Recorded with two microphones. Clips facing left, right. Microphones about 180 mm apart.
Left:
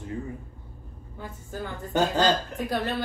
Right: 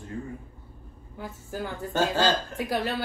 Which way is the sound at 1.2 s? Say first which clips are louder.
Right 2 dB; 10° right (ahead or behind).